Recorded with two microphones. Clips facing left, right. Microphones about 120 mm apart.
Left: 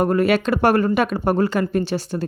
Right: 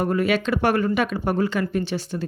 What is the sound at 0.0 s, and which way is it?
Speech, 45° left (ahead or behind).